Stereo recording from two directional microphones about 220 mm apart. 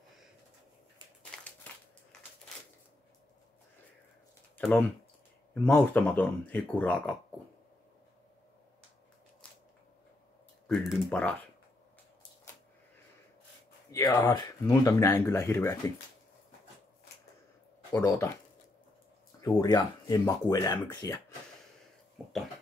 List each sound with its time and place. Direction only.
1.3 s a sound: 5° left (ahead or behind)
4.6 s speech: 5° left (ahead or behind)
10.7 s speech: 5° left (ahead or behind)
12.5 s a sound: 10° left (ahead or behind)
13.9 s speech: 15° left (ahead or behind)
17.9 s speech: 15° left (ahead or behind)
19.4 s speech: 20° left (ahead or behind)
22.2 s cough: centre (ahead or behind)